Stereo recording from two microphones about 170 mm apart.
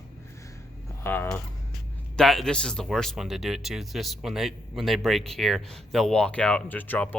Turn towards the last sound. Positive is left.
turn(degrees=10)  # may be behind; listen again after turning